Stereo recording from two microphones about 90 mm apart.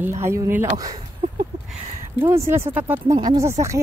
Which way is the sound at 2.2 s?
30° right (ahead or behind).